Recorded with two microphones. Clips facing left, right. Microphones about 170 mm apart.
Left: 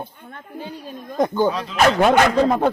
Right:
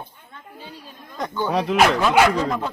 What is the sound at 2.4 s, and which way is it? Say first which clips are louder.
Speech: left 7 dB; 55° left (ahead or behind).